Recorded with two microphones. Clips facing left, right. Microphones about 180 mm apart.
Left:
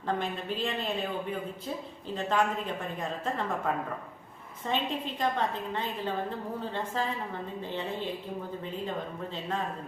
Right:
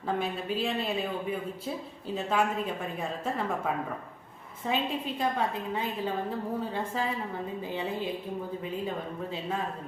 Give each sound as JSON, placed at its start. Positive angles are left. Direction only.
{"t": 0.1, "sound": "speech", "side_deg": -5}
{"t": 4.7, "sound": "a woman's voice", "side_deg": -5}